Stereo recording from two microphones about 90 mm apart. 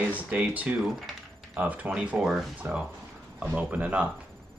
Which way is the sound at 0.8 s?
Centre (ahead or behind).